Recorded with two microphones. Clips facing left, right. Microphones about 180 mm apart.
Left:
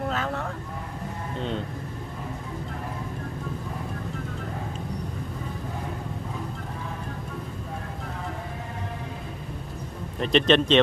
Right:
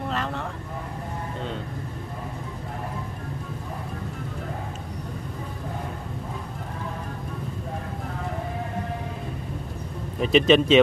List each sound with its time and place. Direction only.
0.1 s vehicle: centre (ahead or behind)
10.1 s speech: 5° right (ahead or behind)